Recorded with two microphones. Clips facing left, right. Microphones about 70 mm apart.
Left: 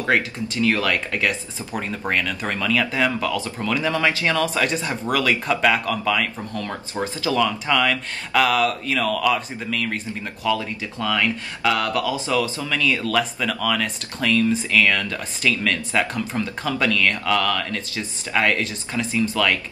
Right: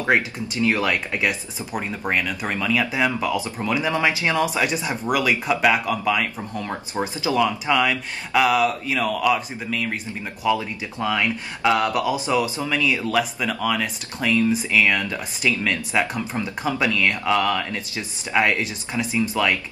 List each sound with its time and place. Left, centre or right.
0.0 s speech: centre